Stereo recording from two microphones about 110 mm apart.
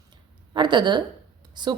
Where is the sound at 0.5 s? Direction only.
45° right (ahead or behind).